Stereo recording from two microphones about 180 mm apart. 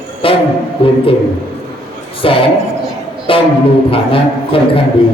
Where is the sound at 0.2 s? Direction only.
30° left (ahead or behind).